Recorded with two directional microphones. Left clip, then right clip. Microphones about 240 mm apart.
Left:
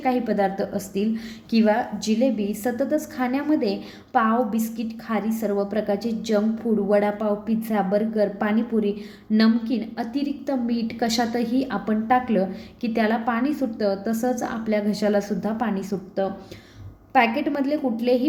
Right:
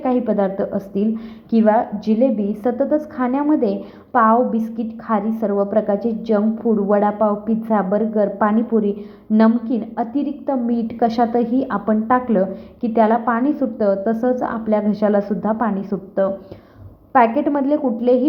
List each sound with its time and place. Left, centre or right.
0.0 s a woman's voice: centre
17.1 s a woman's voice: centre